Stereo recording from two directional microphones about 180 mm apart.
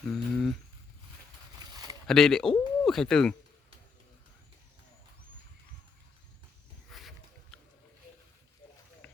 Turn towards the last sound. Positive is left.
turn(degrees=0)  # may be behind; listen again after turning